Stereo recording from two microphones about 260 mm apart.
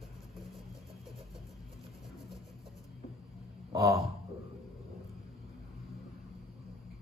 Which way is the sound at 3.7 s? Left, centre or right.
Centre.